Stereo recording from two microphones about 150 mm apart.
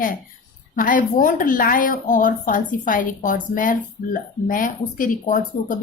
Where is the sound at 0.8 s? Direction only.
65° left (ahead or behind).